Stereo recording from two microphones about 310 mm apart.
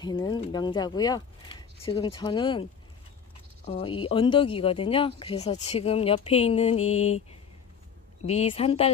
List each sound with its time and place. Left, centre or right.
0.0 s speech: centre
3.6 s speech: centre
8.3 s speech: centre